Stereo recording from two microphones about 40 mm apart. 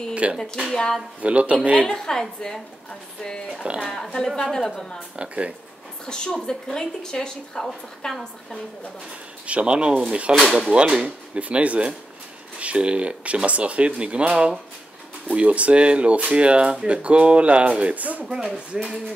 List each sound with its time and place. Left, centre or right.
0.1 s speech: right
0.4 s a woman's voice: centre
1.2 s speech: right
1.9 s a woman's voice: centre
3.8 s a woman's voice: centre
5.1 s speech: right
6.0 s a woman's voice: left
9.5 s speech: right
11.3 s speech: right
17.9 s speech: right
18.7 s speech: centre